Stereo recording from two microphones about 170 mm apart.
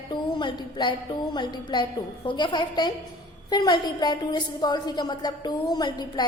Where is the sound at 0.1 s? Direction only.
25° left (ahead or behind).